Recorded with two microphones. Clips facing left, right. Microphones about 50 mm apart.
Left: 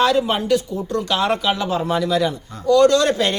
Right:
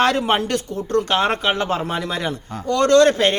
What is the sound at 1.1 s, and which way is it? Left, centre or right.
A man's voice, right.